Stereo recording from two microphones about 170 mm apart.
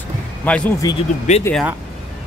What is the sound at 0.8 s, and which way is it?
Speech, 25° left (ahead or behind).